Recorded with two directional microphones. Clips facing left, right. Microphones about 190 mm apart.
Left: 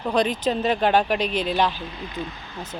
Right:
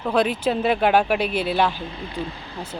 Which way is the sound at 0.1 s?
5° right (ahead or behind).